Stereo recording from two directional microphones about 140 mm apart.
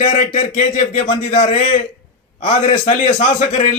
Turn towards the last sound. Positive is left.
turn(degrees=50)  # may be behind; listen again after turning